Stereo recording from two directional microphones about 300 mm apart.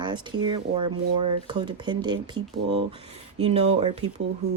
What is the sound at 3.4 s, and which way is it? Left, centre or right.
Speech, centre.